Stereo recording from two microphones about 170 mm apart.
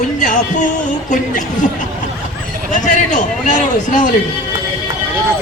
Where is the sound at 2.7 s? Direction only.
50° left (ahead or behind).